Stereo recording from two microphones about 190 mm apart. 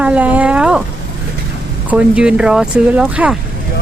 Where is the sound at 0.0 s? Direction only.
5° right (ahead or behind).